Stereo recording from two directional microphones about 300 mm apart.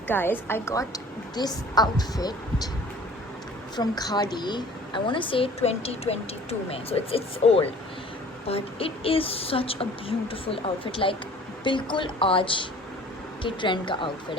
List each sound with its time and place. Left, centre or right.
0.1 s a woman's voice: centre
3.8 s a woman's voice: centre